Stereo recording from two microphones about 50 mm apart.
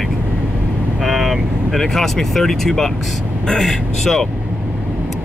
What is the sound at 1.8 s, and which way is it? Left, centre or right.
Speech, centre.